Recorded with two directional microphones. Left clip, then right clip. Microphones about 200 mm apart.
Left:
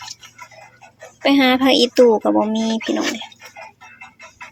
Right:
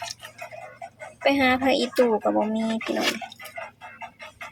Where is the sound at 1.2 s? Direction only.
40° left (ahead or behind).